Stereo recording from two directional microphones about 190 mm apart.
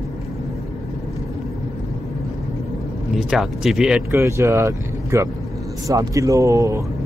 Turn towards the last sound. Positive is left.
turn(degrees=-15)  # may be behind; listen again after turning